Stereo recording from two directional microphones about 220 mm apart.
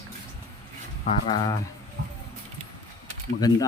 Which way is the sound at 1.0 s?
20° left (ahead or behind).